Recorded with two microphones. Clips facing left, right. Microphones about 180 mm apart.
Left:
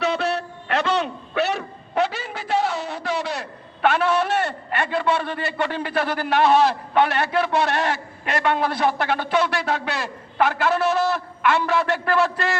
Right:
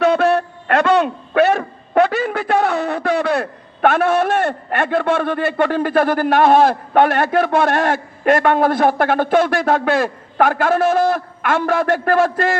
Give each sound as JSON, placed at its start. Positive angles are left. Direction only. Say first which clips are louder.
{"t": 0.0, "sound": "a man's voice", "louder": "right 9 dB", "side_deg": -50}